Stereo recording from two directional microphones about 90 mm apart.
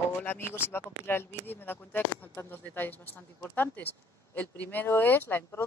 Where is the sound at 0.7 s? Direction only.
25° left (ahead or behind).